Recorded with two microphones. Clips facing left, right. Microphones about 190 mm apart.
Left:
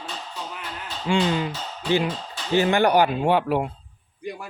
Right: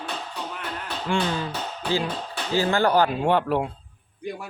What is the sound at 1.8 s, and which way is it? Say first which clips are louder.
Speech: left 3 dB; 60° right (ahead or behind).